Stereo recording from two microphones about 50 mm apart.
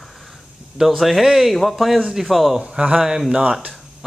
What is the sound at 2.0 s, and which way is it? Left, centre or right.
Speech, centre.